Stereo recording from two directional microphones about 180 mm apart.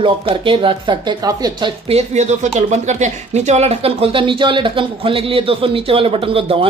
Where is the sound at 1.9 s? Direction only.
40° right (ahead or behind).